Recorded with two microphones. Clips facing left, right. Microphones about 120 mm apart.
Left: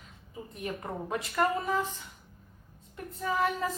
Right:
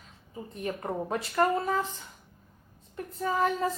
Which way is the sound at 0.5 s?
35° right (ahead or behind).